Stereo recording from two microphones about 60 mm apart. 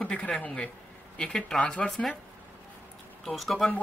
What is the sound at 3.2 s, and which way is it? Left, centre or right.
Speech, centre.